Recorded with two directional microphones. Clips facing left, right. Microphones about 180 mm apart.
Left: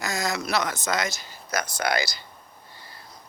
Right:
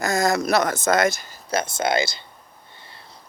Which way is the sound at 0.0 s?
50° right (ahead or behind).